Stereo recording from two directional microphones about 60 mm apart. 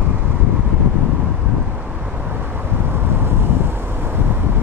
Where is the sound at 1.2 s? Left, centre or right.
Right.